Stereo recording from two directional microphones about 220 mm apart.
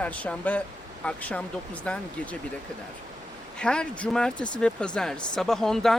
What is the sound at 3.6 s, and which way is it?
Speech, 5° left (ahead or behind).